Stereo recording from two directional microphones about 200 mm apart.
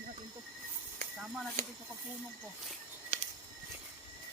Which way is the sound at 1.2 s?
Centre (ahead or behind).